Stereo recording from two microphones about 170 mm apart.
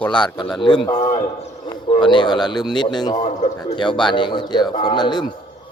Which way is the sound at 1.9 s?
25° left (ahead or behind).